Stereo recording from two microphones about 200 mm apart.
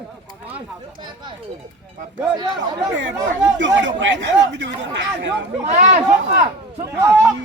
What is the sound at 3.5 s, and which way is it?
Speech, 65° right (ahead or behind).